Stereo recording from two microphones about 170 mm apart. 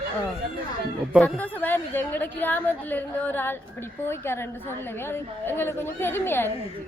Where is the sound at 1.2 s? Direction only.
10° left (ahead or behind).